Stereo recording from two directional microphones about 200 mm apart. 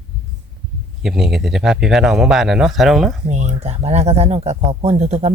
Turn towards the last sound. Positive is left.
turn(degrees=-30)  # may be behind; listen again after turning